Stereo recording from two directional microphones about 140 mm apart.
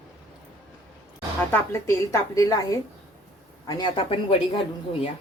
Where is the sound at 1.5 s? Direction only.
20° left (ahead or behind).